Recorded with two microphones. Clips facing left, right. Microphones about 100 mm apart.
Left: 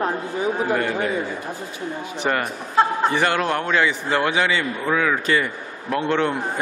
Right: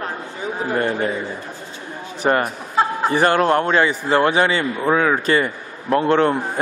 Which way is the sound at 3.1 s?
40° right (ahead or behind).